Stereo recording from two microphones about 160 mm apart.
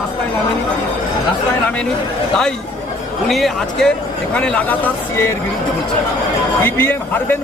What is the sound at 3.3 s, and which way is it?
Speech, centre (ahead or behind).